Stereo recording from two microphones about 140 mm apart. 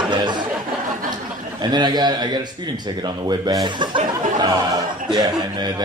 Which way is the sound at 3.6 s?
35° right (ahead or behind).